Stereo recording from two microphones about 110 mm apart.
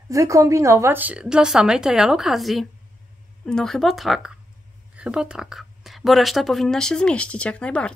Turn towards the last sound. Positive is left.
turn(degrees=10)  # may be behind; listen again after turning